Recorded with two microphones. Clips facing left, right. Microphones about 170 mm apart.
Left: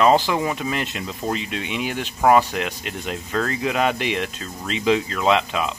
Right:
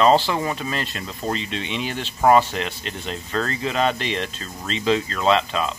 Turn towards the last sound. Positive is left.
turn(degrees=15)  # may be behind; listen again after turning